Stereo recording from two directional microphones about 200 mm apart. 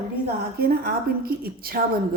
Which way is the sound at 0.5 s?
50° right (ahead or behind).